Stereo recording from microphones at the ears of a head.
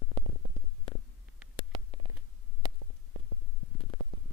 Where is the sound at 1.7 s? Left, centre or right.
Right.